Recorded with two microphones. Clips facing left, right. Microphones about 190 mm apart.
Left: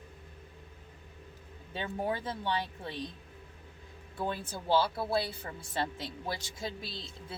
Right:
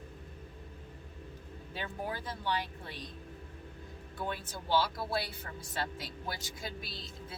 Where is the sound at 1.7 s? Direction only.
25° left (ahead or behind).